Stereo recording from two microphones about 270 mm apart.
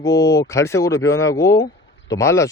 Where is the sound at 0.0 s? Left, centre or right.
Centre.